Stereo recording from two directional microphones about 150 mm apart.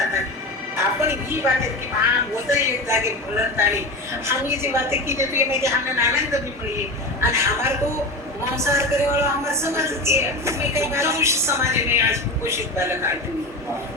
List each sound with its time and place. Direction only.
0.8 s a woman's voice: 15° right (ahead or behind)